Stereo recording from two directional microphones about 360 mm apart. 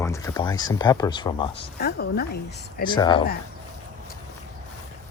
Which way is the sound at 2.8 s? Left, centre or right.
Centre.